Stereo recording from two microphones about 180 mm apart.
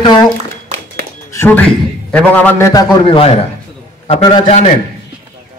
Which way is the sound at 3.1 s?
30° left (ahead or behind).